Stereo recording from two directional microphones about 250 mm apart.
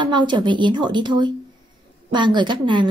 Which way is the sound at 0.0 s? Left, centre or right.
Centre.